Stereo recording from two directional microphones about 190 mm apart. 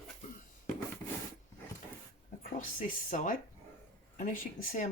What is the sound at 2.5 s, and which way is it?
Speech, 45° left (ahead or behind).